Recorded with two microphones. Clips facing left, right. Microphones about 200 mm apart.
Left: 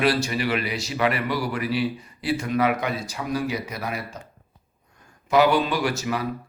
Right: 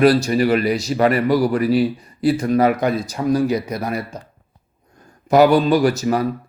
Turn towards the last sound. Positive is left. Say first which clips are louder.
# right 8 dB
turn(degrees=-40)  # may be behind; listen again after turning